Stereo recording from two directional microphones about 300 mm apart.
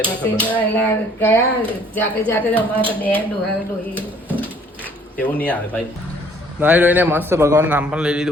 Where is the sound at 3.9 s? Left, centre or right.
Centre.